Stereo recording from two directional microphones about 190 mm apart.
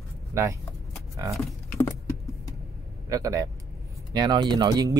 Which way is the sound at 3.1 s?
15° right (ahead or behind).